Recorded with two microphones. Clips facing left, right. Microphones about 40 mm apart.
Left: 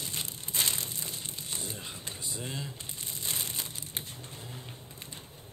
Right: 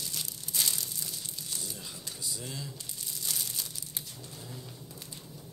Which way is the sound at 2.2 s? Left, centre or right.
Left.